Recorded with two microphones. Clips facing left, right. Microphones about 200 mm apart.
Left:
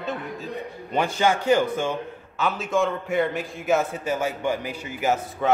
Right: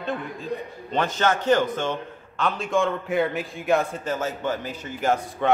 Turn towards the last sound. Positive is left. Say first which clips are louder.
# even
turn(degrees=5)  # may be behind; listen again after turning